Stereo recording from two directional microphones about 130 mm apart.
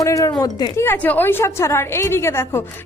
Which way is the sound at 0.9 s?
15° left (ahead or behind).